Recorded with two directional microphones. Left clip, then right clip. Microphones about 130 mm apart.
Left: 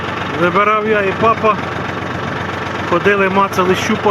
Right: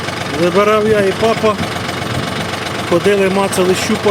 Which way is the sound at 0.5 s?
25° right (ahead or behind).